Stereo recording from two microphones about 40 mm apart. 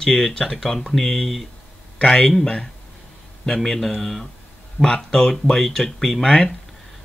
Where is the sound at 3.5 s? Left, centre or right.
Centre.